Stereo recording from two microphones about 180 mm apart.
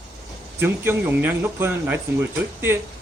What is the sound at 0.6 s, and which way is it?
Speech, 10° right (ahead or behind).